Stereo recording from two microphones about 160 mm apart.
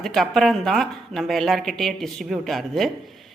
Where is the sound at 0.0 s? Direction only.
Centre (ahead or behind).